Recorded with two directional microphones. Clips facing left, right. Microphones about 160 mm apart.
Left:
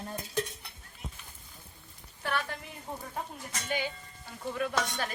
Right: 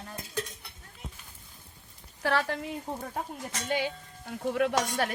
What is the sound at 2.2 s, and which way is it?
Speech, 90° right.